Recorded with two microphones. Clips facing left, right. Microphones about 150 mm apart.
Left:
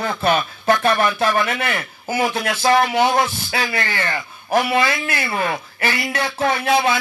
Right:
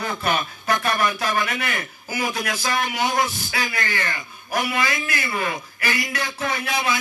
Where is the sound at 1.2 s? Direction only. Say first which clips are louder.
Left 5 dB; 55° left (ahead or behind).